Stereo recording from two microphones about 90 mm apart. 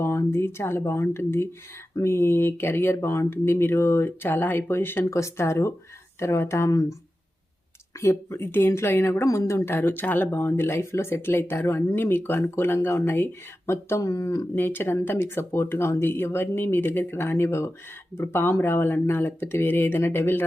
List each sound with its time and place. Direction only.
0.0 s speech: 30° left (ahead or behind)
8.0 s speech: 25° left (ahead or behind)
9.6 s speech: 25° left (ahead or behind)
14.5 s speech: 25° left (ahead or behind)